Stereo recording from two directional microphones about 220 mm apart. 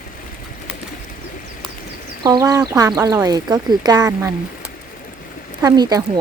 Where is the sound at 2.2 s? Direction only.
15° right (ahead or behind).